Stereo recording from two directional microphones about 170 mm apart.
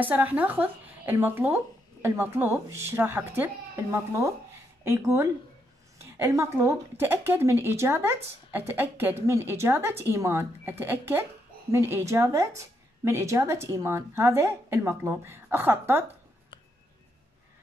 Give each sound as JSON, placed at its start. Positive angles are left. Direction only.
{"t": 0.0, "sound": "speech", "side_deg": -10}
{"t": 4.8, "sound": "speech", "side_deg": -15}